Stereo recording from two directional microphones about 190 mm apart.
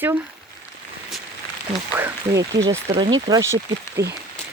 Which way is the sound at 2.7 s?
25° right (ahead or behind).